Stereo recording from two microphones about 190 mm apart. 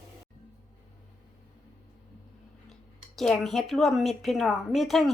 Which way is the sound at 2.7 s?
Centre (ahead or behind).